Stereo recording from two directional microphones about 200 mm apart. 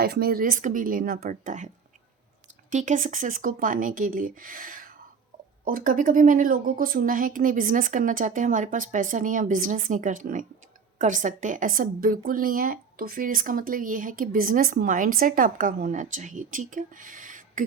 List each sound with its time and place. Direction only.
0.0 s a woman's voice: 50° right (ahead or behind)